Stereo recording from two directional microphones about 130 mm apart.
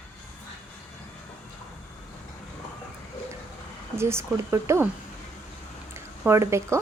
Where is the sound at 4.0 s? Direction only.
20° right (ahead or behind).